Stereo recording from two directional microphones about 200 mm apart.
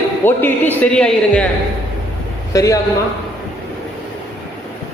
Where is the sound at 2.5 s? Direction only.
15° left (ahead or behind).